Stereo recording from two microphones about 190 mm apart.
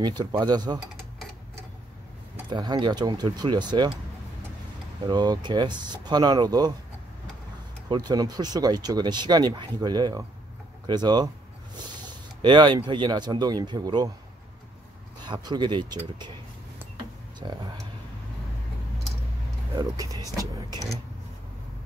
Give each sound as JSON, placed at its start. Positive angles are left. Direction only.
{"t": 0.0, "sound": "speech", "side_deg": -25}
{"t": 2.5, "sound": "speech", "side_deg": -25}
{"t": 5.0, "sound": "speech", "side_deg": -20}
{"t": 7.9, "sound": "speech", "side_deg": -20}
{"t": 12.4, "sound": "speech", "side_deg": -25}
{"t": 15.2, "sound": "speech", "side_deg": -20}
{"t": 17.4, "sound": "speech", "side_deg": -25}
{"t": 19.7, "sound": "speech", "side_deg": -20}